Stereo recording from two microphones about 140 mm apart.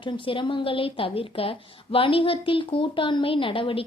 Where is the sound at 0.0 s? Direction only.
35° left (ahead or behind).